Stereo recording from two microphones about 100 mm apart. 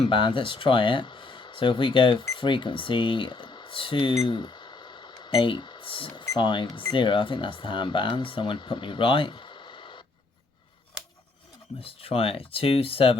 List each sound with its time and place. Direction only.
0.0 s speech: 55° left (ahead or behind)
4.3 s a sound: 50° left (ahead or behind)
6.4 s speech: 55° left (ahead or behind)
11.8 s speech: 70° left (ahead or behind)